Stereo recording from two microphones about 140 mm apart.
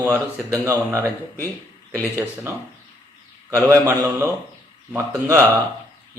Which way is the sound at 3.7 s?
20° right (ahead or behind).